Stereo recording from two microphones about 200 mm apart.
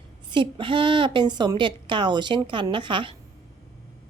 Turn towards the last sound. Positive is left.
turn(degrees=-25)  # may be behind; listen again after turning